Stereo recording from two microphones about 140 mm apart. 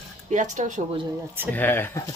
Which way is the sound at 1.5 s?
15° left (ahead or behind).